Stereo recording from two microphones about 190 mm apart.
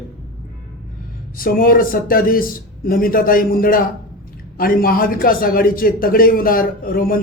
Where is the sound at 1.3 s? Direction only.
50° left (ahead or behind).